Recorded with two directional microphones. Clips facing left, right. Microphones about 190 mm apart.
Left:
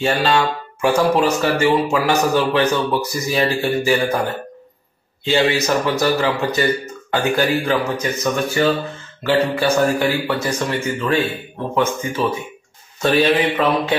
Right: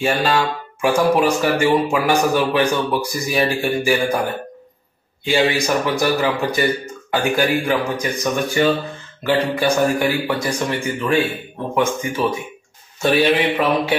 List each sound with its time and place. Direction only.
0.0 s speech: 10° right (ahead or behind)
5.2 s speech: 15° right (ahead or behind)